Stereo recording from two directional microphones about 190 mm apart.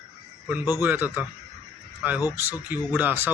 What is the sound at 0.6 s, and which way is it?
Speech, 20° left (ahead or behind).